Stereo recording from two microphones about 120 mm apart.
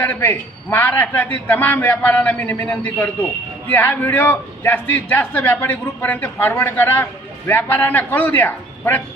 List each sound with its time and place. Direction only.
0.0 s a man's voice: 15° left (ahead or behind)